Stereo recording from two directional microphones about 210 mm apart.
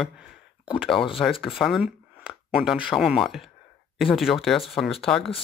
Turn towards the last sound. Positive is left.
turn(degrees=0)  # may be behind; listen again after turning